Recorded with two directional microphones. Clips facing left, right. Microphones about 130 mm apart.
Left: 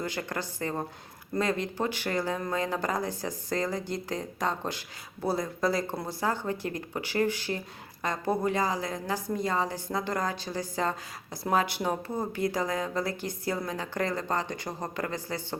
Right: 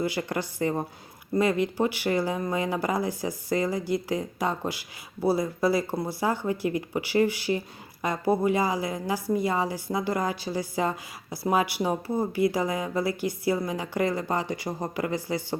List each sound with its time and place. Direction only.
0.0 s a woman's voice: 10° right (ahead or behind)